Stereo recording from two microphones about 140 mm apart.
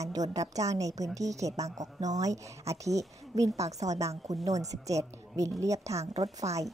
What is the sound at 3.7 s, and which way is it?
Speech, 55° right (ahead or behind).